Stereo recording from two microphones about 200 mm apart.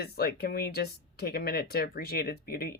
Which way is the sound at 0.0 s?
50° left (ahead or behind).